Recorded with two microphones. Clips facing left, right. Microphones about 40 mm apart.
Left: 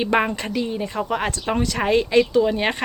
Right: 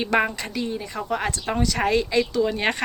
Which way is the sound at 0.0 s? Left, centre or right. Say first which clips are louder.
Left 2 dB; centre.